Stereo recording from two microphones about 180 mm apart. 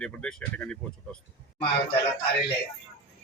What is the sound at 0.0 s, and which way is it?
Speech, 5° left (ahead or behind).